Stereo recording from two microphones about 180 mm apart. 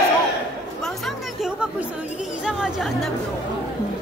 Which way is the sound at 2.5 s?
5° right (ahead or behind).